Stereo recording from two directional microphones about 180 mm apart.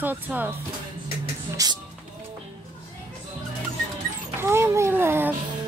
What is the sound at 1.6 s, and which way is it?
Music, 20° right (ahead or behind).